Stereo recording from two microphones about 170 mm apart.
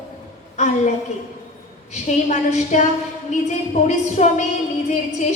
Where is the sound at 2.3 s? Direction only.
45° left (ahead or behind).